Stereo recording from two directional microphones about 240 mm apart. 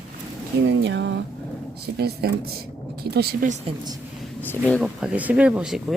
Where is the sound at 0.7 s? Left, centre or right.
Right.